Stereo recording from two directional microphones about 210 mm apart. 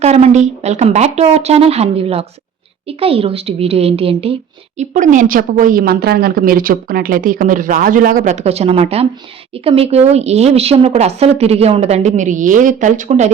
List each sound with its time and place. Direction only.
0.0 s a woman's voice: 30° right (ahead or behind)
4.8 s a woman's voice: 35° right (ahead or behind)